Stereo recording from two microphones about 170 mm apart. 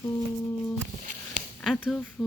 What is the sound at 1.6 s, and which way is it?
Speech, centre (ahead or behind).